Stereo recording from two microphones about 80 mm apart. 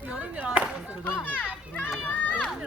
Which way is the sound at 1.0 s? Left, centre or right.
Centre.